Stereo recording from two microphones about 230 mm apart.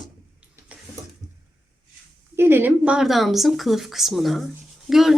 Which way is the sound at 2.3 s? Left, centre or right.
Centre.